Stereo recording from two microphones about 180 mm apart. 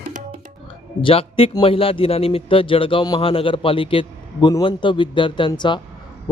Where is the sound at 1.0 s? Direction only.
30° left (ahead or behind).